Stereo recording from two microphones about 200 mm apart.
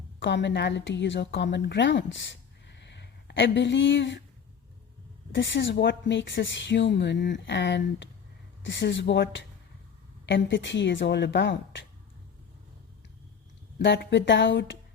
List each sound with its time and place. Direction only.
0.2 s a woman's voice: 60° left (ahead or behind)
5.3 s a woman's voice: 65° left (ahead or behind)
13.7 s a woman's voice: 60° left (ahead or behind)